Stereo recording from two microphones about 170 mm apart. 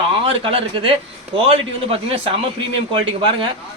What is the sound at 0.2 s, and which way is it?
A man's voice, 30° right (ahead or behind).